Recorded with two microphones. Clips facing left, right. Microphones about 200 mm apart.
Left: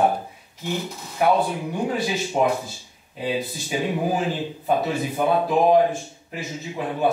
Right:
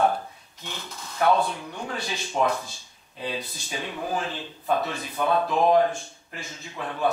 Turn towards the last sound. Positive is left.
turn(degrees=15)  # may be behind; listen again after turning